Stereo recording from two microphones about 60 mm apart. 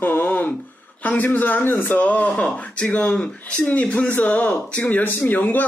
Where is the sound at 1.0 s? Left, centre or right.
Left.